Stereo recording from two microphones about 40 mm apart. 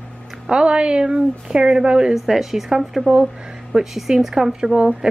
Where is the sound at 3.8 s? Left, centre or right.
Centre.